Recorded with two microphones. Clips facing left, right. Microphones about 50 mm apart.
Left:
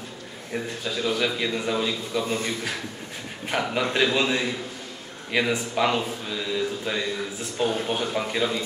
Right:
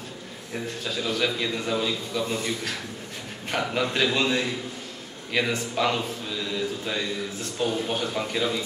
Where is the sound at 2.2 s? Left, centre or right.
Left.